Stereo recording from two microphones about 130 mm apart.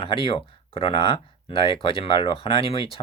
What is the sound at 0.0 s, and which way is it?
Speech, 40° left (ahead or behind).